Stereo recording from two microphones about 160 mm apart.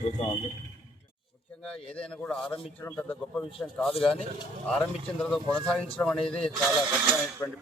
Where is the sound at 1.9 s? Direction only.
5° left (ahead or behind).